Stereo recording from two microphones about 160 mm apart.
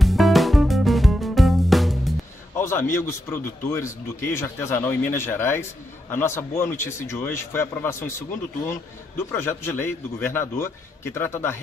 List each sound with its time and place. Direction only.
0.0 s music: centre (ahead or behind)
2.5 s speech: 15° left (ahead or behind)